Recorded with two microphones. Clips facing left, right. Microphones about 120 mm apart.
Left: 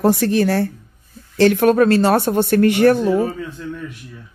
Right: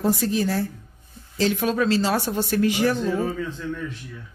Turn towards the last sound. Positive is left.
turn(degrees=15)  # may be behind; listen again after turning